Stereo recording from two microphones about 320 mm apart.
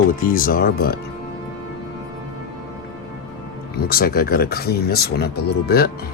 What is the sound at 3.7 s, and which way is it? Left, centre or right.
Speech, left.